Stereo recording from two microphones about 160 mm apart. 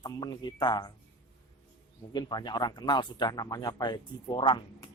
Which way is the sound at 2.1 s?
25° left (ahead or behind).